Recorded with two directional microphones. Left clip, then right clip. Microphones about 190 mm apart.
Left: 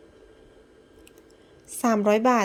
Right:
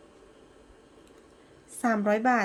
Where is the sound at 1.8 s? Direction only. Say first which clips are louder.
Left 4 dB; 25° left (ahead or behind).